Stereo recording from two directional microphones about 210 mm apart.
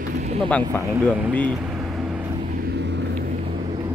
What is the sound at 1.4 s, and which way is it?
Vehicle, 5° left (ahead or behind).